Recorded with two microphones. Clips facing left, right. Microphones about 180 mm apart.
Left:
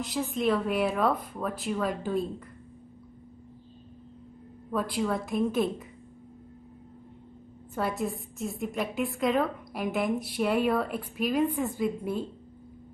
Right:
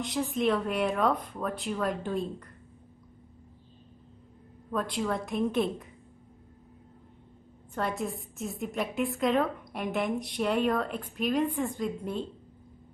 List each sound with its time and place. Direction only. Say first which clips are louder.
0.0 s a woman's voice: even; centre (ahead or behind)
4.6 s a woman's voice: left 2 dB; 5° left (ahead or behind)
7.7 s a woman's voice: left 2 dB; 5° left (ahead or behind)